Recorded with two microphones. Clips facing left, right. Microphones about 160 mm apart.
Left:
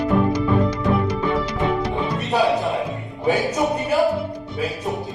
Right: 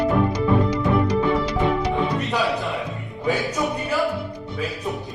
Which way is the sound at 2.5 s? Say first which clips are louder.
Left 4 dB; 20° left (ahead or behind).